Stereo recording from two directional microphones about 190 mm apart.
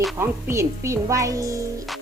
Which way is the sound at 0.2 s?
15° right (ahead or behind).